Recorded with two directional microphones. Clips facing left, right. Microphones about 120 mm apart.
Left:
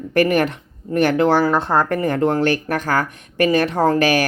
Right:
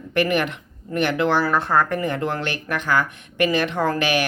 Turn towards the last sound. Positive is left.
turn(degrees=40)  # may be behind; listen again after turning